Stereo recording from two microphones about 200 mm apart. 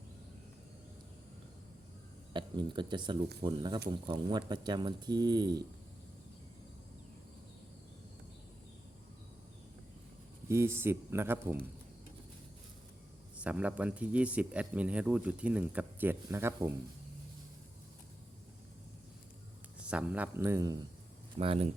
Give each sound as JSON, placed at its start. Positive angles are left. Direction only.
{"t": 2.3, "sound": "speech", "side_deg": -25}
{"t": 10.5, "sound": "speech", "side_deg": -10}
{"t": 13.3, "sound": "speech", "side_deg": -5}
{"t": 19.8, "sound": "speech", "side_deg": -5}
{"t": 21.3, "sound": "speech", "side_deg": -30}